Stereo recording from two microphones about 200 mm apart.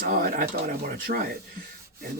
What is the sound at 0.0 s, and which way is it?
Speech, 45° right (ahead or behind).